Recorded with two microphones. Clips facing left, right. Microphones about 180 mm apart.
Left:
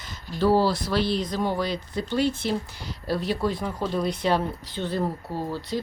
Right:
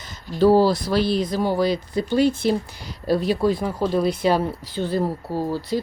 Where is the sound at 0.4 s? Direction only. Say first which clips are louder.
Right 5 dB; 45° right (ahead or behind).